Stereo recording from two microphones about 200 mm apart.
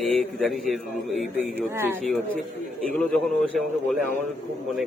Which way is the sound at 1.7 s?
10° right (ahead or behind).